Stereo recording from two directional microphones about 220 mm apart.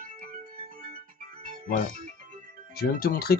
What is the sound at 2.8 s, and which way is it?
Speech, 45° left (ahead or behind).